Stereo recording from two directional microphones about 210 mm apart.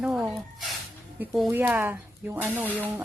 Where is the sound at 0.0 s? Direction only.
Centre (ahead or behind).